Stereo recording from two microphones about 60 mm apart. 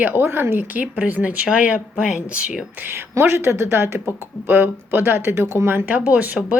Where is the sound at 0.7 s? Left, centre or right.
Right.